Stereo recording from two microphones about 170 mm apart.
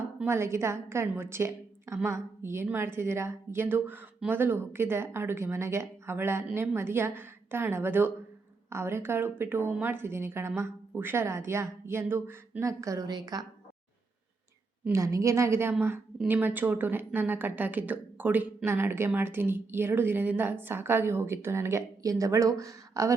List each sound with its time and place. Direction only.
0.2 s speech: 15° right (ahead or behind)
14.8 s speech: 20° right (ahead or behind)